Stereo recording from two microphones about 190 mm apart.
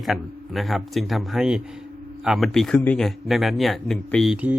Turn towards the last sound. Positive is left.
turn(degrees=-5)  # may be behind; listen again after turning